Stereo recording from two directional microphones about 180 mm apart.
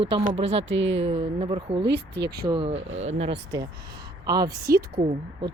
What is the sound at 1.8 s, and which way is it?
Speech, 70° right (ahead or behind).